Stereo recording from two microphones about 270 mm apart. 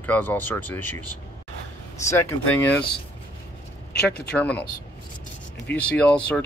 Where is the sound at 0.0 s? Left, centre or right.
Centre.